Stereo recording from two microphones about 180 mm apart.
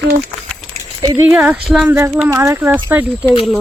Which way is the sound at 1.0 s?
20° right (ahead or behind).